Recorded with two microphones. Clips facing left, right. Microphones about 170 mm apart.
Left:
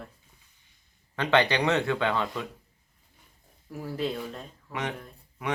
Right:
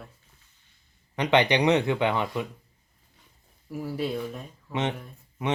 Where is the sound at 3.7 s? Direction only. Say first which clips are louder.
Right 1 dB; 10° right (ahead or behind).